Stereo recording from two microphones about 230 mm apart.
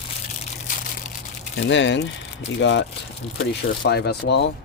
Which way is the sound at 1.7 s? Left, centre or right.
Left.